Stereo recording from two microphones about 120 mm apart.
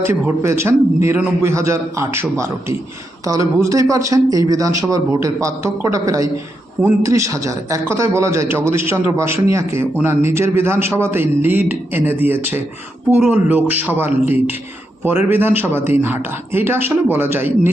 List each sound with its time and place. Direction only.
0.0 s speech: 20° right (ahead or behind)